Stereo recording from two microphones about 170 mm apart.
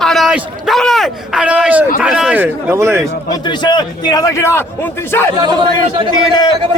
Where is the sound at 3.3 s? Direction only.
25° left (ahead or behind).